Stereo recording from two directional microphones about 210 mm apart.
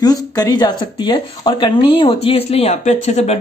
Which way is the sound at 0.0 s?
20° left (ahead or behind).